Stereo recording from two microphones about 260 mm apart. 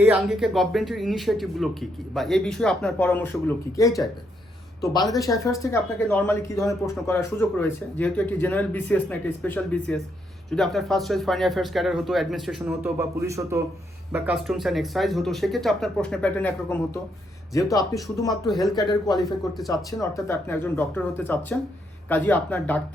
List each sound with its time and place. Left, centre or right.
0.0 s speech: centre
5.3 s speech: centre
18.4 s speech: centre
18.7 s speech: centre